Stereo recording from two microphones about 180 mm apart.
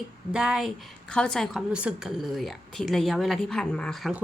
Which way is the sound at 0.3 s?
5° right (ahead or behind).